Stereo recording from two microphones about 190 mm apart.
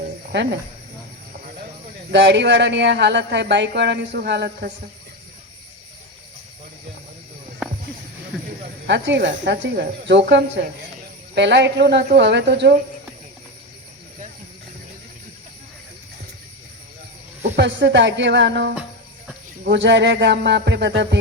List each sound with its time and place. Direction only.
2.0 s speech: 65° right (ahead or behind)
8.9 s speech: 70° right (ahead or behind)
17.6 s speech: 70° right (ahead or behind)